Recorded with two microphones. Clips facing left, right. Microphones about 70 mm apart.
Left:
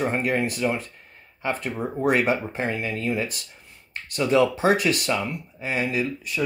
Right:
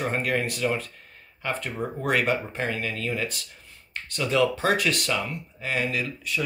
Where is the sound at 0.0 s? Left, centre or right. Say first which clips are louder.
Left 3 dB; centre.